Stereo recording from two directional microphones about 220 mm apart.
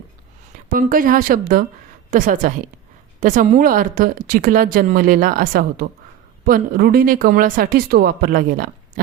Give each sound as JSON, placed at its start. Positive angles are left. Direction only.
{"t": 0.5, "sound": "speech", "side_deg": -40}